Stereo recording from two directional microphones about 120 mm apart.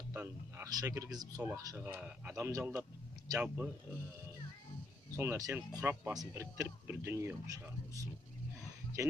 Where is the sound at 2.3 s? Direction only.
25° right (ahead or behind).